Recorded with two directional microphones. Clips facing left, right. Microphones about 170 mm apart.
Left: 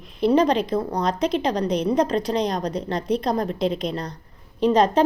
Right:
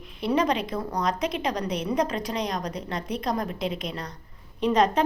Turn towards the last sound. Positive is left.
turn(degrees=30)  # may be behind; listen again after turning